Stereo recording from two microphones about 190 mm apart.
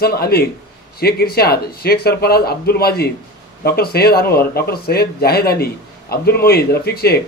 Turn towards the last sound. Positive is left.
turn(degrees=55)  # may be behind; listen again after turning